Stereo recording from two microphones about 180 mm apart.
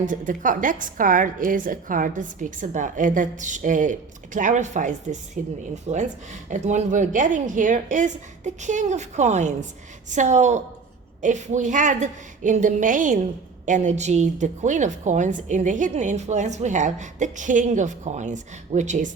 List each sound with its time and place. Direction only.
0.0 s a woman's voice: 45° right (ahead or behind)